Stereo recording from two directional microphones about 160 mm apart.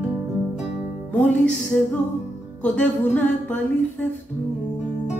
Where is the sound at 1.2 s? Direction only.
5° left (ahead or behind).